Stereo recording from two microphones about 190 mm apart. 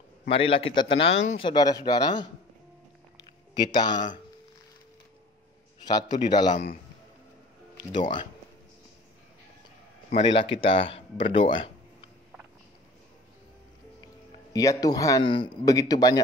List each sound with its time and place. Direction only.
0.3 s a man's voice: 30° left (ahead or behind)
1.5 s a man's voice: 20° left (ahead or behind)
3.5 s a man's voice: 20° left (ahead or behind)
5.9 s a man's voice: 20° left (ahead or behind)
7.9 s a man's voice: 25° left (ahead or behind)
10.1 s speech: 30° left (ahead or behind)
14.5 s a man's voice: 15° left (ahead or behind)